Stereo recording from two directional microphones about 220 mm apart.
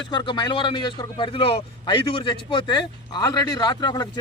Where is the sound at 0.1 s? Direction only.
20° left (ahead or behind).